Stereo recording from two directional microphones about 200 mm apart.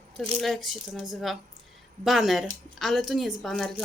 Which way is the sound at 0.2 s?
Centre (ahead or behind).